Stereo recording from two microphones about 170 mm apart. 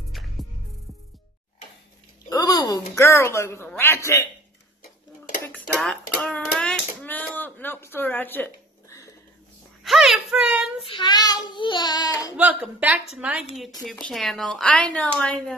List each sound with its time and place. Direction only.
0.1 s music: centre (ahead or behind)
2.2 s speech: 25° left (ahead or behind)
5.4 s a sound: 5° left (ahead or behind)
9.8 s child singing: centre (ahead or behind)
10.8 s child singing: 30° left (ahead or behind)
12.4 s a woman's voice: 10° right (ahead or behind)